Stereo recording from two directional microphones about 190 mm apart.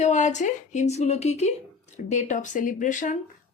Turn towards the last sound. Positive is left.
turn(degrees=40)  # may be behind; listen again after turning